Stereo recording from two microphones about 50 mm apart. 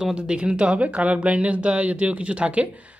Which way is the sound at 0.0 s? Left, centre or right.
Centre.